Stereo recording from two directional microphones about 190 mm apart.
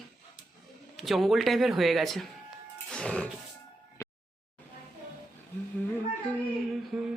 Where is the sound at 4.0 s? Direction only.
15° left (ahead or behind).